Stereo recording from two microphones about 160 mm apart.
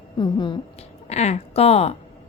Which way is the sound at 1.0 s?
45° left (ahead or behind).